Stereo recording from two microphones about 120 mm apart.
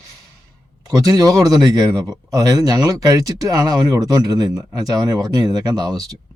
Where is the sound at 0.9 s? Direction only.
30° right (ahead or behind).